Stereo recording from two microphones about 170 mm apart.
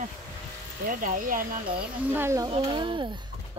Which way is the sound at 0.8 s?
50° right (ahead or behind).